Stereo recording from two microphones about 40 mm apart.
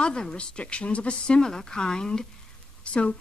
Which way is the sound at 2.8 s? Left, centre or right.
Left.